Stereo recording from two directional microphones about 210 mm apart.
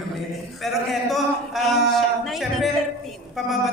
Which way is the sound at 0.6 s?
Centre (ahead or behind).